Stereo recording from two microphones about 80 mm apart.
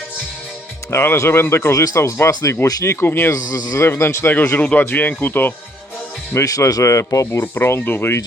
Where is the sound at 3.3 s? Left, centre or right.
Left.